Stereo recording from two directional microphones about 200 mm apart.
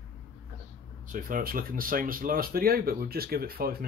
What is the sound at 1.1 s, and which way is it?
Speech, 45° right (ahead or behind).